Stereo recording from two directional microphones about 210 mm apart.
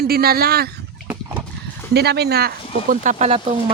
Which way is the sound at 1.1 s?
5° right (ahead or behind).